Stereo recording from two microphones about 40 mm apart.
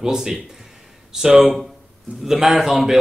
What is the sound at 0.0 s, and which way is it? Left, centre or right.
A man's voice, centre.